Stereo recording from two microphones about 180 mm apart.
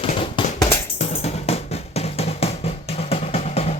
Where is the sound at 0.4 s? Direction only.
25° left (ahead or behind).